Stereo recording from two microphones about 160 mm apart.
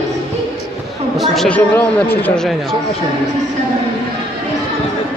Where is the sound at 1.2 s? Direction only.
Centre (ahead or behind).